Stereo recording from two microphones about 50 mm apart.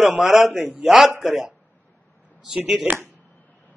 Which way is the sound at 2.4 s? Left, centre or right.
Centre.